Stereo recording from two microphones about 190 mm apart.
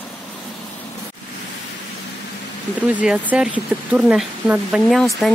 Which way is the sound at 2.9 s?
5° right (ahead or behind).